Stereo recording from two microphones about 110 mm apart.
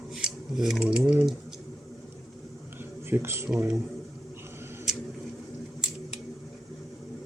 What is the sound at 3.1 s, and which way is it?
Speech, 25° right (ahead or behind).